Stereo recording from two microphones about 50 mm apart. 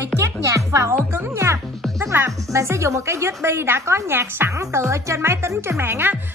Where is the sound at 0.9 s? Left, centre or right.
Right.